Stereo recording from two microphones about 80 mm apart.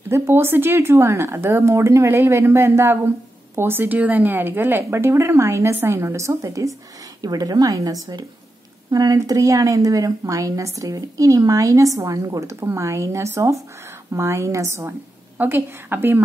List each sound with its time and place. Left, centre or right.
0.1 s a woman's voice: right